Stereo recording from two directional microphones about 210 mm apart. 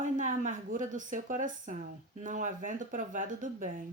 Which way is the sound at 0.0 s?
40° right (ahead or behind).